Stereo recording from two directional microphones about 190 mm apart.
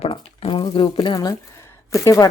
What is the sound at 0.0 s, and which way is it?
A woman's voice, 30° left (ahead or behind).